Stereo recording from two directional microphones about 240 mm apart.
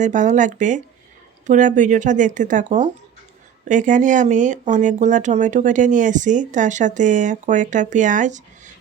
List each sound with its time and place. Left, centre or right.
0.0 s speech: right